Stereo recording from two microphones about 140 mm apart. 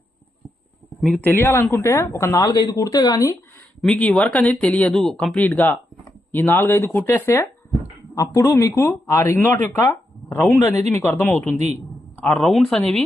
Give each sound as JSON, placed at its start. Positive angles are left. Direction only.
{"t": 0.9, "sound": "speech", "side_deg": 0}
{"t": 1.2, "sound": "speech", "side_deg": 20}
{"t": 3.8, "sound": "speech", "side_deg": 5}
{"t": 7.8, "sound": "speech", "side_deg": 25}
{"t": 12.2, "sound": "speech", "side_deg": 0}